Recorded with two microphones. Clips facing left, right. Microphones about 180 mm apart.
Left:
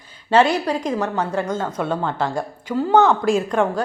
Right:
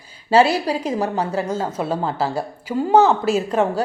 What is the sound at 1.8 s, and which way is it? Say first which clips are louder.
Speech: left 1 dB; 30° right (ahead or behind).